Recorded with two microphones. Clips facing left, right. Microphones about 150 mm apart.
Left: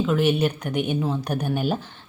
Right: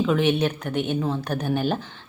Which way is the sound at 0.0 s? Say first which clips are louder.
Even; 5° left (ahead or behind).